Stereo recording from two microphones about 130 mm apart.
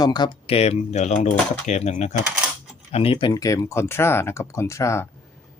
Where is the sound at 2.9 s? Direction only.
45° left (ahead or behind).